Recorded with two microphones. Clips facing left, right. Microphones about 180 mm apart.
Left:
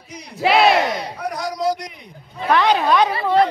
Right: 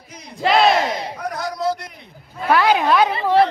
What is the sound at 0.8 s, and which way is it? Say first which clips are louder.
Battle cry: even; 25° right (ahead or behind).